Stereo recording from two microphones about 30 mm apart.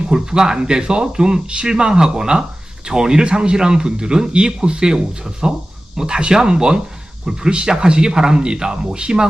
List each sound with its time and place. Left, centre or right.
0.1 s speech: right